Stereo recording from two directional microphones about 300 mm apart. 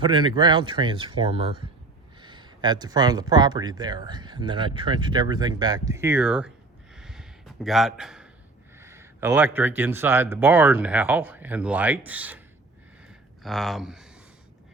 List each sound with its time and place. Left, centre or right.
0.0 s speech: centre
6.9 s a sound: centre
8.8 s speech: centre
13.4 s speech: centre